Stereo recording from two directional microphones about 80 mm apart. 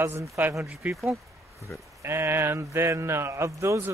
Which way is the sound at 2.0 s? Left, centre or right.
Right.